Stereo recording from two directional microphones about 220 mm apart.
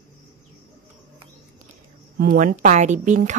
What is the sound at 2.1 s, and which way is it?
A woman's voice, 40° right (ahead or behind).